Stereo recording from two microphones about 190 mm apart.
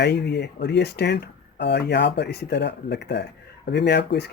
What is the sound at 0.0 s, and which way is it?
Speech, 60° left (ahead or behind).